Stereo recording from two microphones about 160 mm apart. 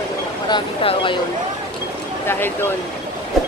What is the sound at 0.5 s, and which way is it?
Speech, 30° left (ahead or behind).